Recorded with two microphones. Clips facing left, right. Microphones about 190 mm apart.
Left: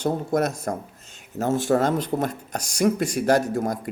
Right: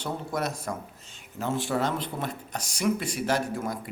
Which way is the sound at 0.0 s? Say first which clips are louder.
Left 8 dB; 45° left (ahead or behind).